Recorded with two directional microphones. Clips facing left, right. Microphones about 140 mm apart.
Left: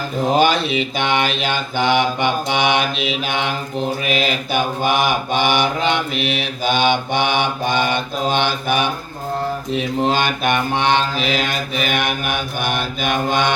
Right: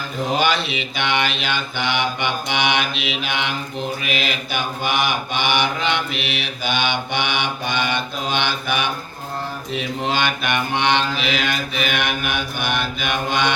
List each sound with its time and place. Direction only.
0.3 s mantra: 45° left (ahead or behind)